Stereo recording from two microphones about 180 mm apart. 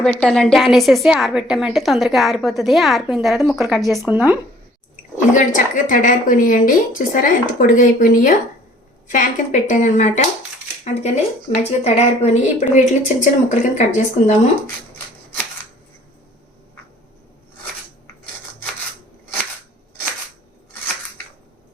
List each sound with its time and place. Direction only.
0.0 s a woman's voice: 5° left (ahead or behind)
4.1 s speech: 10° right (ahead or behind)
5.1 s a woman's voice: 45° left (ahead or behind)